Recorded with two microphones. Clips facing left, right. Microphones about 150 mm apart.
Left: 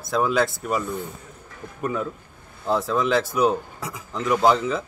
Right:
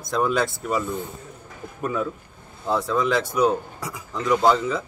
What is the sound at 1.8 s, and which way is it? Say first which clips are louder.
Speech: right 1 dB; 15° left (ahead or behind).